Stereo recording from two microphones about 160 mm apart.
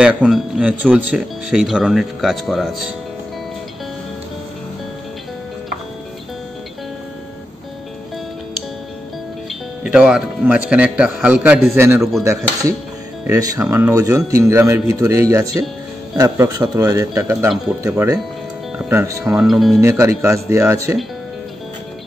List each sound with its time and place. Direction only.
0.0 s speech: 5° right (ahead or behind)
9.8 s a man's voice: 5° right (ahead or behind)
19.3 s speech: centre (ahead or behind)
19.8 s speech: 20° right (ahead or behind)